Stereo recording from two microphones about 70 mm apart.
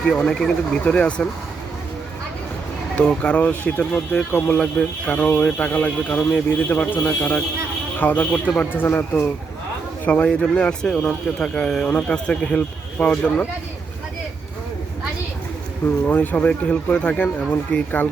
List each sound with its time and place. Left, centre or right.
0.1 s speech: centre
3.0 s speech: centre
4.4 s speech: centre; by 9.0 s left
10.0 s speech: centre
16.0 s speech: left